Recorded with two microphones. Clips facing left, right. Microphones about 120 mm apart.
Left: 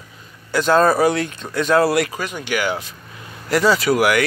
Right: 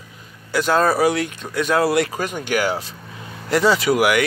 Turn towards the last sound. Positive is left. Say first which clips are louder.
# even
turn(degrees=-15)  # may be behind; listen again after turning